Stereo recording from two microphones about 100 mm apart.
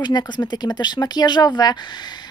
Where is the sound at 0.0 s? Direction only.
45° left (ahead or behind).